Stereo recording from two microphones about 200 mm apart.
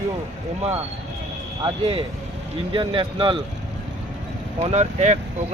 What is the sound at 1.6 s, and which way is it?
Speech, 30° right (ahead or behind).